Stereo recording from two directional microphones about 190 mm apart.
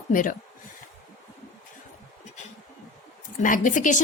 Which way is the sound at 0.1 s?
45° left (ahead or behind).